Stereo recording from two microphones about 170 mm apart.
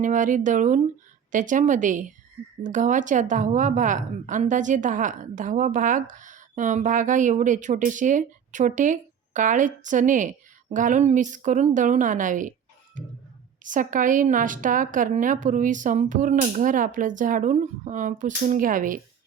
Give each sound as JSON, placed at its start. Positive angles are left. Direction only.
{"t": 0.0, "sound": "a woman's voice", "side_deg": -50}